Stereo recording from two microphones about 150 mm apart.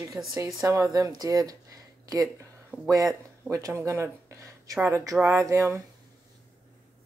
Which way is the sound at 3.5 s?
20° right (ahead or behind).